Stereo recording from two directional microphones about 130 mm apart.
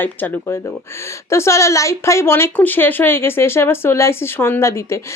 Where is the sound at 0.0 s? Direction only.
15° left (ahead or behind).